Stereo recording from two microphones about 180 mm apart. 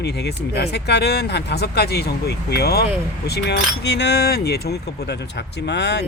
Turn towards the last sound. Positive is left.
turn(degrees=70)  # may be behind; listen again after turning